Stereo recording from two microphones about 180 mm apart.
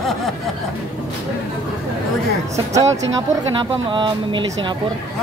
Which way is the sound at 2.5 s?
20° right (ahead or behind).